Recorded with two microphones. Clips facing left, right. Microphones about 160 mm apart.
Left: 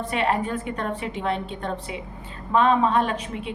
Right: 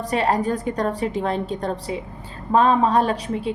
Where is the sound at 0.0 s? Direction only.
40° right (ahead or behind).